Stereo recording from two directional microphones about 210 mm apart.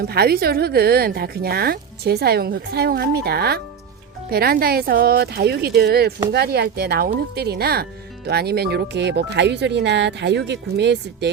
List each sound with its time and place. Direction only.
0.0 s a woman's voice: 50° right (ahead or behind)